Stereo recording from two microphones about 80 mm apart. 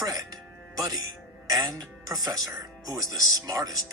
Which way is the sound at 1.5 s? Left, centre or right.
Right.